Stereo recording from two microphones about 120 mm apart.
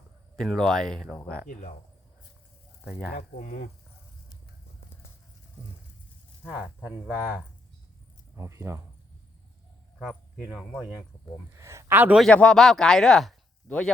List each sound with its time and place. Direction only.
0.3 s speech: 5° left (ahead or behind)
3.3 s speech: 90° left
6.4 s speech: 10° right (ahead or behind)
8.4 s speech: 25° right (ahead or behind)
10.0 s speech: centre (ahead or behind)
11.5 s speech: 25° right (ahead or behind)
12.3 s speech: 10° left (ahead or behind)